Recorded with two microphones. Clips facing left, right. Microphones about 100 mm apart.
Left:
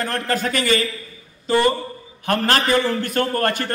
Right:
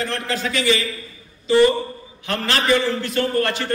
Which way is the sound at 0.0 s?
50° left (ahead or behind).